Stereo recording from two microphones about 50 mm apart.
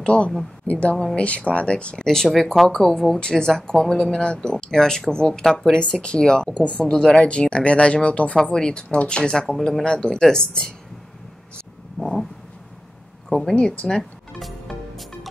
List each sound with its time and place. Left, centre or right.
0.0 s a woman's voice: left
2.0 s speech: centre
5.7 s speech: centre
8.4 s speech: centre
12.0 s a sound: centre
13.3 s speech: centre
13.6 s speech: left
14.4 s music: centre